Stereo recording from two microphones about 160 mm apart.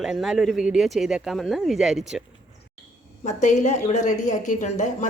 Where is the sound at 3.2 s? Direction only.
45° left (ahead or behind).